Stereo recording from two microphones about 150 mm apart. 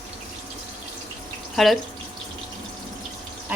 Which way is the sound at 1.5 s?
Centre (ahead or behind).